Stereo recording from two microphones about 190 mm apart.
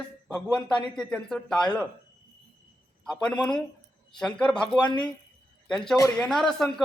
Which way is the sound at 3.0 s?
5° left (ahead or behind).